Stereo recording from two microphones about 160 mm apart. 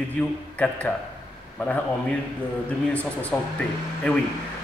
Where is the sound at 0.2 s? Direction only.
5° left (ahead or behind).